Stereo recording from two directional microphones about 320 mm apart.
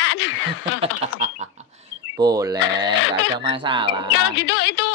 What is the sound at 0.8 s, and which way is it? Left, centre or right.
Speech, right.